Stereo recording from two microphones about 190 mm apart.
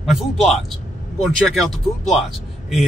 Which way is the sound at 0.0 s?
Centre (ahead or behind).